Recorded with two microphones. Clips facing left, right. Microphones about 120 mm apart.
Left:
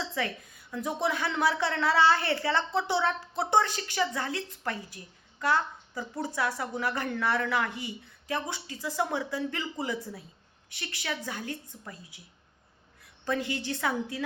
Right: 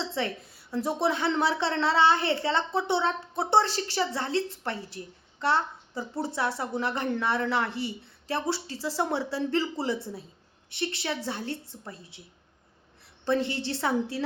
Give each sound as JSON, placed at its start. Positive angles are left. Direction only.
{"t": 0.1, "sound": "a woman's voice", "side_deg": -25}
{"t": 13.2, "sound": "a woman's voice", "side_deg": -30}